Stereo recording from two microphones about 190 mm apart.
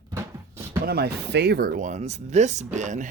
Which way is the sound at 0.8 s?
55° right (ahead or behind).